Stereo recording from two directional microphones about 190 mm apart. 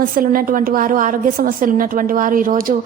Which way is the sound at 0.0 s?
50° right (ahead or behind).